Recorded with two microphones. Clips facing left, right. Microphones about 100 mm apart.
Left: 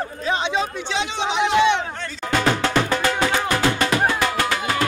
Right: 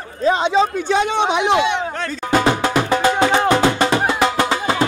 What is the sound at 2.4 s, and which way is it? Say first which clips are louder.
Music: right 3 dB; 15° right (ahead or behind).